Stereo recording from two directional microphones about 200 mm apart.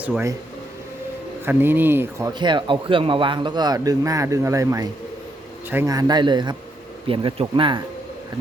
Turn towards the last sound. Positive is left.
turn(degrees=-25)  # may be behind; listen again after turning